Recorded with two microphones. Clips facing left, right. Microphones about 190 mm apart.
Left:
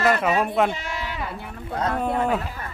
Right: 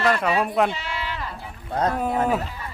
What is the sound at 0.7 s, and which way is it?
Speech, 45° left (ahead or behind).